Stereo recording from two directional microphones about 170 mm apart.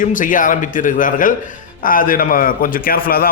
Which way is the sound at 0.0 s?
50° left (ahead or behind).